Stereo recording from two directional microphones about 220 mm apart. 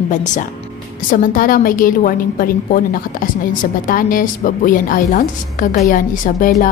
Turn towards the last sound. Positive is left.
turn(degrees=35)  # may be behind; listen again after turning